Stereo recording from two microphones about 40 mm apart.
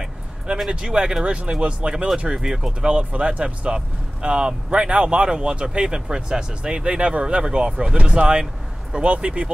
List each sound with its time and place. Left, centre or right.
0.7 s speech: right
2.3 s speech: centre
2.9 s speech: right
8.0 s speech: right